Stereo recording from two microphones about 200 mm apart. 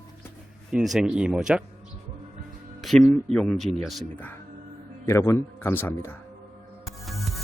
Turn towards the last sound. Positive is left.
turn(degrees=0)  # may be behind; listen again after turning